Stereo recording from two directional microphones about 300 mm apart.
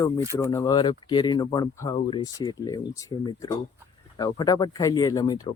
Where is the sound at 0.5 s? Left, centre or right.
Centre.